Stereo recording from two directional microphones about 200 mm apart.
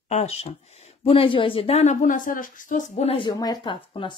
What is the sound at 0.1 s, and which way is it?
Speech, 30° left (ahead or behind).